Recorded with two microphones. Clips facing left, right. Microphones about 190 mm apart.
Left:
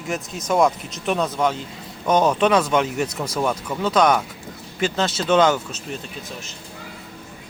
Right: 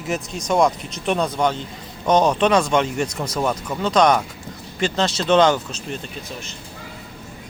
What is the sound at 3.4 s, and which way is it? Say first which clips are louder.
Speech: even; 5° right (ahead or behind).